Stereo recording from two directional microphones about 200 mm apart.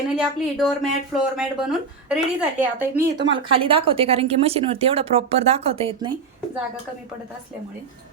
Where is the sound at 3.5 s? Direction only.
25° right (ahead or behind).